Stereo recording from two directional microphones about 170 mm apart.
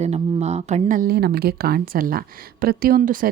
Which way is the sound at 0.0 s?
40° right (ahead or behind).